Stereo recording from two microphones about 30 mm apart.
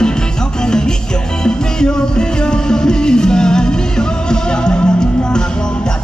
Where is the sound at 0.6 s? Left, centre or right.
Left.